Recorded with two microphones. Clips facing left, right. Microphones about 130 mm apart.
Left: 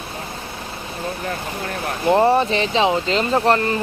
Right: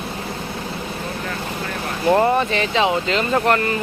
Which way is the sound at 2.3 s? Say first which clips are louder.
Left 2 dB; 30° left (ahead or behind).